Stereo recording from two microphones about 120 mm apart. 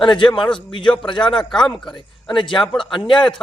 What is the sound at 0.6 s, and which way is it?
Speech, 45° left (ahead or behind).